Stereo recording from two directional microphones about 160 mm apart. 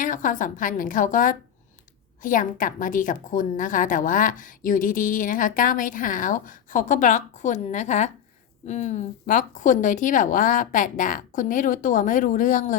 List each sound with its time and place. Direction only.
0.0 s a woman's voice: 55° left (ahead or behind)